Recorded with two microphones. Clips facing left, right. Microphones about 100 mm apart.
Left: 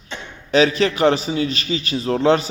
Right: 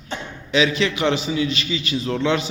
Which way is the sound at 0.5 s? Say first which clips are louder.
Left 4 dB; 40° left (ahead or behind).